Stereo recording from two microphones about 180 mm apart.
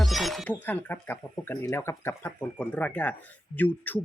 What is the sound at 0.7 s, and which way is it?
Speech, 10° left (ahead or behind).